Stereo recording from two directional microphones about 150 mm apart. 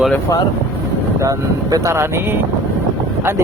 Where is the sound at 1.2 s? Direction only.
20° right (ahead or behind).